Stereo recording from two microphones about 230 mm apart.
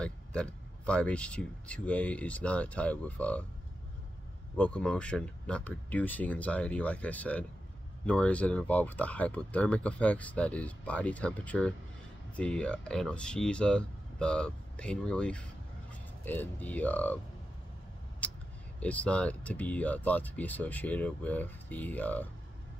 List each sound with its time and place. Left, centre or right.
0.0 s speech: centre
4.6 s speech: centre
18.2 s a sound: centre
18.8 s speech: centre